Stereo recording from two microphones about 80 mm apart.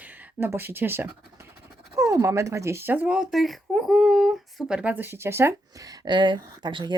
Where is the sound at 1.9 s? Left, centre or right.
Right.